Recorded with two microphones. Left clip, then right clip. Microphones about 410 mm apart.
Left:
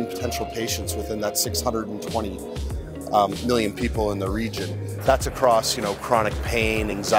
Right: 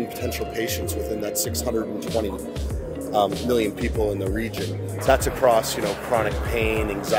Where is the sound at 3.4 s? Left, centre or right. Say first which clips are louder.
Right 1 dB; left.